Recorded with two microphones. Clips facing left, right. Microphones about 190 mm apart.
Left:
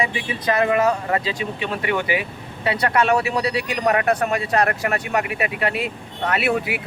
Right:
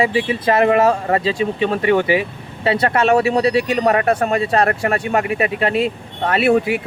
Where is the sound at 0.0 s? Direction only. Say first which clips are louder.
Right 7 dB; 30° right (ahead or behind).